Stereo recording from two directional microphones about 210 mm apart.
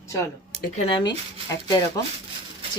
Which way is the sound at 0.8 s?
25° left (ahead or behind).